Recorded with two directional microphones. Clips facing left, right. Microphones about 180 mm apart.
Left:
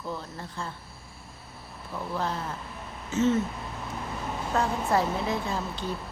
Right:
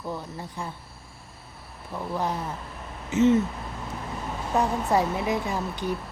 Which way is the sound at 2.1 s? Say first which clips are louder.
Right 2 dB; 15° right (ahead or behind).